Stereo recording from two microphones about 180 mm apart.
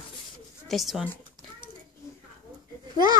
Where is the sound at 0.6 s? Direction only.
Centre (ahead or behind).